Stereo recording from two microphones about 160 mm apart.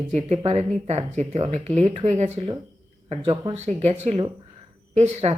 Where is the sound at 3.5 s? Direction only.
45° right (ahead or behind).